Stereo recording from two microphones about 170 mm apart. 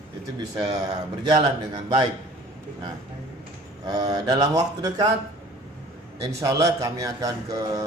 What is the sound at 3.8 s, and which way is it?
Speech, 20° right (ahead or behind).